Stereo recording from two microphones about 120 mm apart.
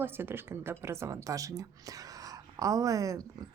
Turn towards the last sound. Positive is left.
turn(degrees=-30)  # may be behind; listen again after turning